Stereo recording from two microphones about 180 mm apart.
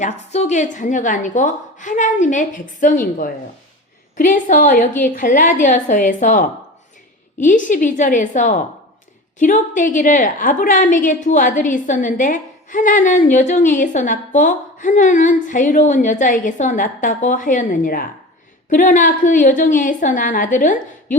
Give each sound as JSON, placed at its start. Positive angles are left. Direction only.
{"t": 0.0, "sound": "a woman's voice", "side_deg": 40}